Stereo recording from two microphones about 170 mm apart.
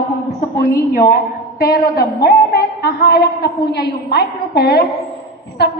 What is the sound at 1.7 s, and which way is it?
A woman's voice, 65° left (ahead or behind).